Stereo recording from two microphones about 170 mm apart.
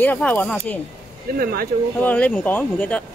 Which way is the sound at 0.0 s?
10° left (ahead or behind).